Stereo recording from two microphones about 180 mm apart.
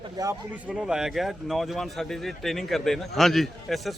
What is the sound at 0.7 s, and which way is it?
Speech, 5° right (ahead or behind).